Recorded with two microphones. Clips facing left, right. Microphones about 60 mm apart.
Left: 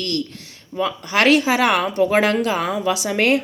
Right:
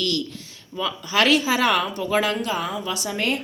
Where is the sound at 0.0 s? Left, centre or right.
Left.